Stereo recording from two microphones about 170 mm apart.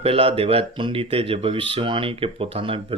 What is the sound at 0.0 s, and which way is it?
Speech, 35° right (ahead or behind).